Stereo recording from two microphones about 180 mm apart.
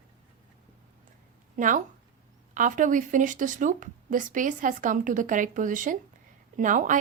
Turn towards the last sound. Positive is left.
turn(degrees=-45)  # may be behind; listen again after turning